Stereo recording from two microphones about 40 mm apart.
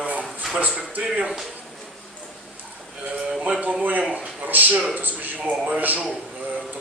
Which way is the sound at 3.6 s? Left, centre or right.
Right.